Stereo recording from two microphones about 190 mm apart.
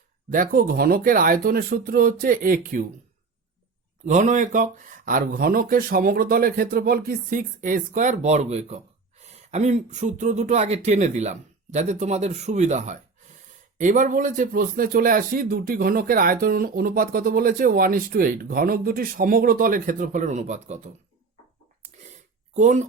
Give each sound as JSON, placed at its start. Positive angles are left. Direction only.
{"t": 0.3, "sound": "speech", "side_deg": -45}
{"t": 4.0, "sound": "speech", "side_deg": -40}
{"t": 22.5, "sound": "speech", "side_deg": -40}